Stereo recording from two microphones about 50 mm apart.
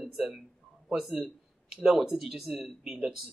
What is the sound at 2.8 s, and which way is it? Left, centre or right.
Speech, centre.